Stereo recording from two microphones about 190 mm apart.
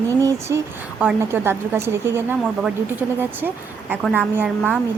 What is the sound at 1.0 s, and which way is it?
A woman's voice, 10° right (ahead or behind).